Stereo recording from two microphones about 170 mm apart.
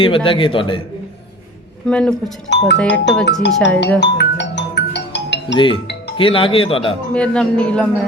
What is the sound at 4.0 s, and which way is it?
Music, 90° left.